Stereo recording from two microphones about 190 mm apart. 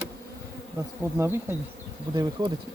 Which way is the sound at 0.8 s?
15° right (ahead or behind).